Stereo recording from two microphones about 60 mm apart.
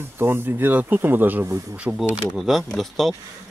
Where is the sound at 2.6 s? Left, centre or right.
Centre.